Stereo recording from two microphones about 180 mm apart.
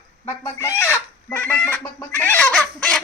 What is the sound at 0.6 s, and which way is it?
Chicken, 15° left (ahead or behind).